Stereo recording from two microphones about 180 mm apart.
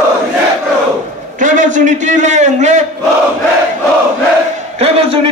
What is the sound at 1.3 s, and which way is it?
A man's voice, 45° right (ahead or behind).